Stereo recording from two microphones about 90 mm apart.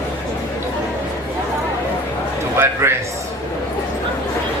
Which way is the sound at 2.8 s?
30° right (ahead or behind).